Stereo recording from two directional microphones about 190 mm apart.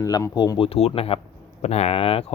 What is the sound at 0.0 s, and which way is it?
Speech, 20° left (ahead or behind).